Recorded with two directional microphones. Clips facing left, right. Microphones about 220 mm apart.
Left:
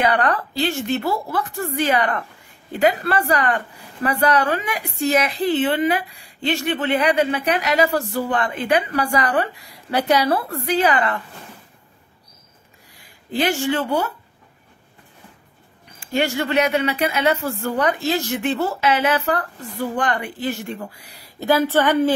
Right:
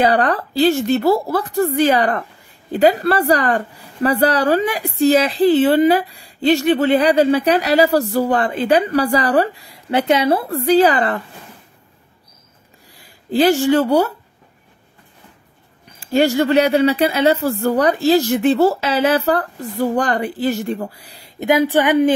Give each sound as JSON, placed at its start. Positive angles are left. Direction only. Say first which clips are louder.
{"t": 0.0, "sound": "speech", "louder": "right 4 dB", "side_deg": -35}
{"t": 13.0, "sound": "speech", "louder": "right 7 dB", "side_deg": -35}
{"t": 16.0, "sound": "speech", "louder": "right 7 dB", "side_deg": -35}
{"t": 21.4, "sound": "a woman's voice", "louder": "right 3 dB", "side_deg": -15}